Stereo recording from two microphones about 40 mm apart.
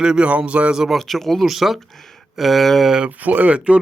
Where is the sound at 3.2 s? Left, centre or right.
Right.